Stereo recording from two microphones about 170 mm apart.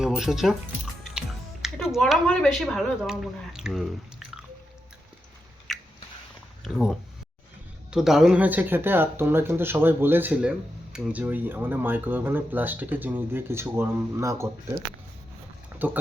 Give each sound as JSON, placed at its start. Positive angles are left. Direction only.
{"t": 0.0, "sound": "speech", "side_deg": -5}
{"t": 1.6, "sound": "a sound", "side_deg": 0}
{"t": 2.0, "sound": "speech", "side_deg": 5}
{"t": 5.7, "sound": "biting", "side_deg": 0}
{"t": 6.7, "sound": "speech", "side_deg": 0}
{"t": 15.7, "sound": "a sound", "side_deg": -10}